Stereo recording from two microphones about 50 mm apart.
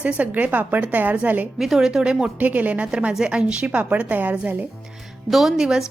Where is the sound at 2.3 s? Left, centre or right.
Right.